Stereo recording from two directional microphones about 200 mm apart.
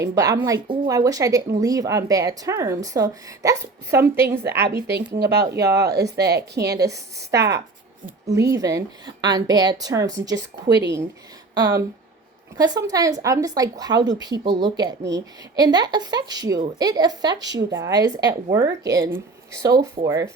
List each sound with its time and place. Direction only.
0.0 s speech: 20° right (ahead or behind)
4.9 s speech: 55° right (ahead or behind)
6.8 s speech: 15° right (ahead or behind)
10.3 s speech: 60° right (ahead or behind)
11.5 s speech: 20° right (ahead or behind)
17.4 s speech: 60° right (ahead or behind)
17.8 s speech: 20° right (ahead or behind)